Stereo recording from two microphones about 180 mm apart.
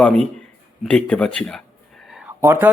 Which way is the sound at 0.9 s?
5° left (ahead or behind).